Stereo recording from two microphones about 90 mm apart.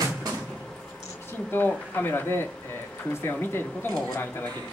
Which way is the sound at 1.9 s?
20° left (ahead or behind).